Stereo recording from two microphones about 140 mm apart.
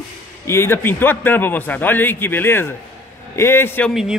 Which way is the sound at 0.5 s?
15° left (ahead or behind).